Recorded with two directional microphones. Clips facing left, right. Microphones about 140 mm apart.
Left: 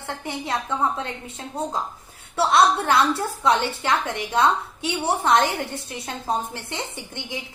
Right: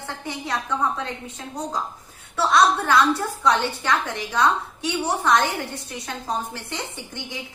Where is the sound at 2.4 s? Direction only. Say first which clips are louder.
Left 1 dB; 25° left (ahead or behind).